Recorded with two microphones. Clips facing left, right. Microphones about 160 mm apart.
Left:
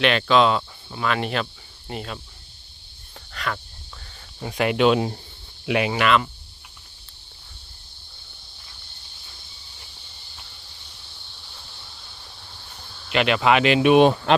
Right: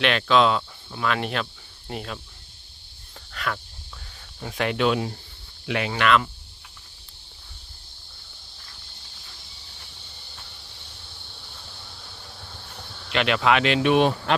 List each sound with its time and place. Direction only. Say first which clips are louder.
0.0 s speech: left 2 dB; centre (ahead or behind)
3.3 s cricket: left 1 dB; centre (ahead or behind)
4.4 s speech: left 3 dB; 5° left (ahead or behind)
4.8 s speech: left 5 dB; 25° left (ahead or behind)
13.1 s speech: left 2 dB; 5° left (ahead or behind)
13.9 s speech: left 6 dB; 20° left (ahead or behind)